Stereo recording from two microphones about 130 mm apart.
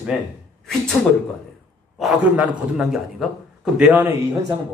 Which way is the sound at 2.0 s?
Centre (ahead or behind).